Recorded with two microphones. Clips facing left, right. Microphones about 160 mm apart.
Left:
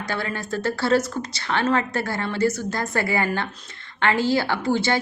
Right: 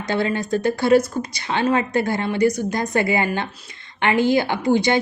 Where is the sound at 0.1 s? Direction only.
20° right (ahead or behind).